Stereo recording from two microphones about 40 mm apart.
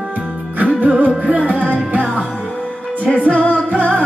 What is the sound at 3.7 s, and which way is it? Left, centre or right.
Music, right.